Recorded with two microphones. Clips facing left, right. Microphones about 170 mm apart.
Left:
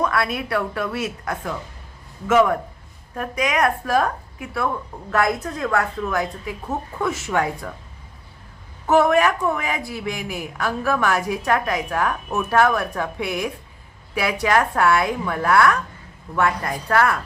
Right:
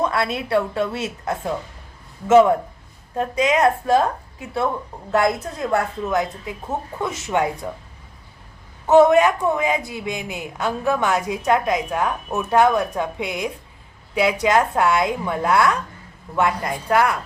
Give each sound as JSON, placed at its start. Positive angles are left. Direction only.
{"t": 0.0, "sound": "speech", "side_deg": -25}
{"t": 8.9, "sound": "speech", "side_deg": -20}